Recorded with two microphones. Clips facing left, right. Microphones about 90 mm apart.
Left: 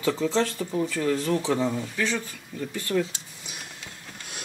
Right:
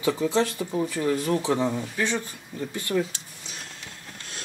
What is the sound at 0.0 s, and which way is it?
Speech, 15° right (ahead or behind).